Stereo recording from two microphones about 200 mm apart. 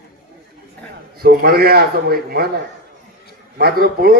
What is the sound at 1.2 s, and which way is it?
A man's voice, 50° right (ahead or behind).